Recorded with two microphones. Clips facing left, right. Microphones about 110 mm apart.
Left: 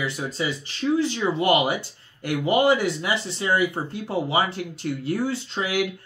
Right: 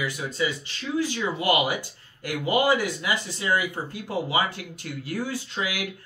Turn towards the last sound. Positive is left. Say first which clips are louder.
# left 5 dB
turn(degrees=25)  # may be behind; listen again after turning